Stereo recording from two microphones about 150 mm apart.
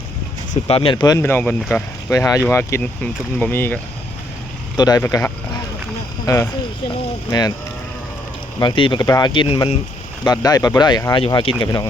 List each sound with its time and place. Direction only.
0.7 s speech: 40° left (ahead or behind)
1.0 s speech: 20° left (ahead or behind)
4.8 s speech: 25° left (ahead or behind)
8.5 s speech: 30° left (ahead or behind)
10.2 s speech: 25° left (ahead or behind)